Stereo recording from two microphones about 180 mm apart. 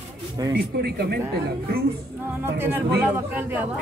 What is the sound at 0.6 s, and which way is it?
Speech, 60° right (ahead or behind).